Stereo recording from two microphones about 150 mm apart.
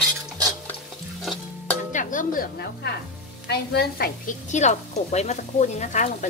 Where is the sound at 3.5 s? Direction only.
90° left.